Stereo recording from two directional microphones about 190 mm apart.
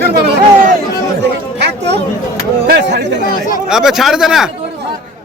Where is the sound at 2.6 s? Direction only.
60° right (ahead or behind).